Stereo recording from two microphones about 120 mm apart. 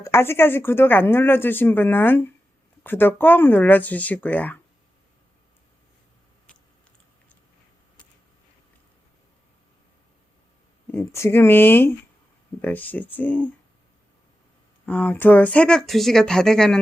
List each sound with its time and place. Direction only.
0.0 s speech: 20° left (ahead or behind)
6.5 s chewing: 10° left (ahead or behind)
10.9 s speech: 20° left (ahead or behind)
14.8 s speech: 15° left (ahead or behind)